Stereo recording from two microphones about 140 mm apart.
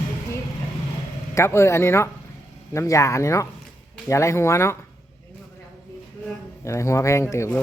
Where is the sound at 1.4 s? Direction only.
20° left (ahead or behind).